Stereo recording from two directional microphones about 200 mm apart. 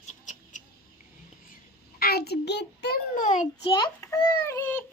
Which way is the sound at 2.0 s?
50° left (ahead or behind).